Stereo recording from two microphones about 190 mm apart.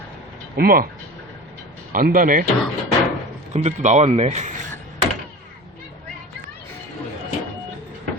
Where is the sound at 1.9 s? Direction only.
50° right (ahead or behind).